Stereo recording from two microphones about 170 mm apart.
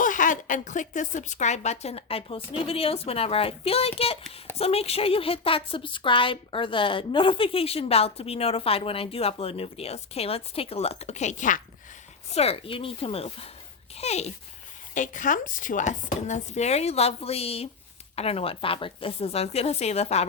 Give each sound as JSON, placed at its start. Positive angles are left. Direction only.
{"t": 0.0, "sound": "a woman's voice", "side_deg": 50}
{"t": 12.3, "sound": "a woman's voice", "side_deg": 35}